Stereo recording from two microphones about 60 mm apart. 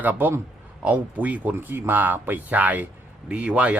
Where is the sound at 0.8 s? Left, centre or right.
Right.